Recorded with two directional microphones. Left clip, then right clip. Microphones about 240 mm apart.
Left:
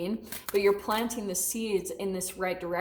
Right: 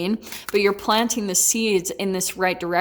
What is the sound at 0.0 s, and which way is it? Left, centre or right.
A woman's voice, right.